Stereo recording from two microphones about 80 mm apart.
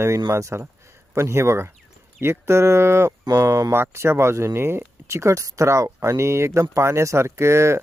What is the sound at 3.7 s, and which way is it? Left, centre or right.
Speech, right.